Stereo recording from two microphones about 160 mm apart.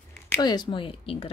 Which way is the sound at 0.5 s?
30° left (ahead or behind).